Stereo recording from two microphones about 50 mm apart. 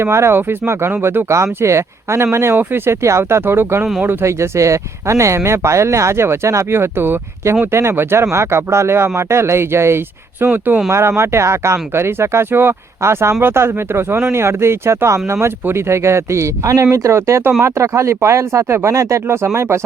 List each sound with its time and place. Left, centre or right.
0.0 s speech: right
0.3 s speech: right
0.7 s speech: right
1.3 s speech: right
2.2 s speech: right
4.3 s speech: right
7.7 s speech: right
10.8 s speech: right
13.0 s speech: right
13.4 s speech: right